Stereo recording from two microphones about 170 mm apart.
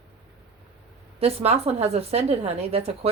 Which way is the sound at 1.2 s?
35° right (ahead or behind).